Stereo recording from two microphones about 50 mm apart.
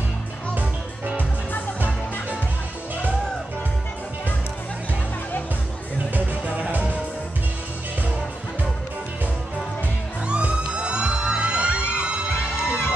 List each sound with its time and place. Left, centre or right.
0.6 s music: right
6.1 s music: right
10.2 s music: right
12.3 s music: left